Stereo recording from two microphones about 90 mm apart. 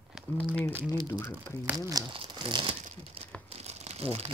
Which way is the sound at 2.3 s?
60° right (ahead or behind).